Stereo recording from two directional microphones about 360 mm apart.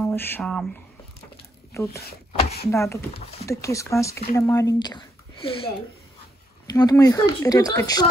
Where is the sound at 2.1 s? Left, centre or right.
Left.